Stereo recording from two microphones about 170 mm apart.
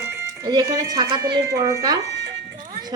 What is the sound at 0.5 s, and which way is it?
A woman's voice, 25° right (ahead or behind).